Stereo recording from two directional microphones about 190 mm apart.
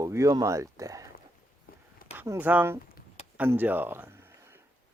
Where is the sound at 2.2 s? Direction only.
10° right (ahead or behind).